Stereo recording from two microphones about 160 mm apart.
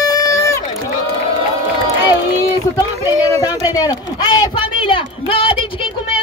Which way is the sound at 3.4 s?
25° left (ahead or behind).